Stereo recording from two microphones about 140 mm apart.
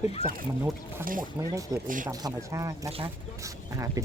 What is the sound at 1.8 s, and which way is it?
Speech, 70° right (ahead or behind).